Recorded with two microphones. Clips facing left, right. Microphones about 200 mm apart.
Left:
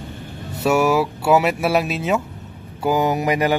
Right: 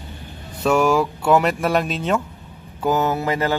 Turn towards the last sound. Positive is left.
turn(degrees=15)  # may be behind; listen again after turning